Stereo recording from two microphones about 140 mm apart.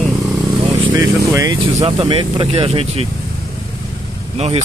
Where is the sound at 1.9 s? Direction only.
35° right (ahead or behind).